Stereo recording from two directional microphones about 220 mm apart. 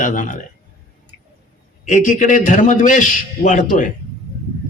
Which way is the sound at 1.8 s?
35° left (ahead or behind).